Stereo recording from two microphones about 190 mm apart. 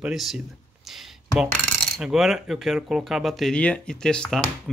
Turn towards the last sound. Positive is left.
turn(degrees=5)  # may be behind; listen again after turning